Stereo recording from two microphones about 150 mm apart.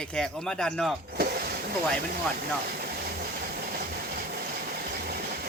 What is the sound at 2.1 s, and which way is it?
Train, 75° right (ahead or behind).